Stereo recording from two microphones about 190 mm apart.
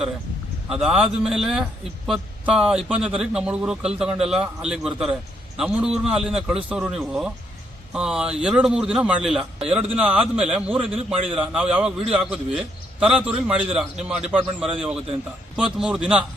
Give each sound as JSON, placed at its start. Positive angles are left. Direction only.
{"t": 0.7, "sound": "a man's voice", "side_deg": -5}
{"t": 10.9, "sound": "a man's voice", "side_deg": -30}
{"t": 11.3, "sound": "a man's voice", "side_deg": -5}